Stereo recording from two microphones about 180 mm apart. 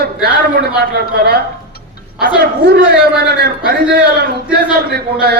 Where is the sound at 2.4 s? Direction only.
65° right (ahead or behind).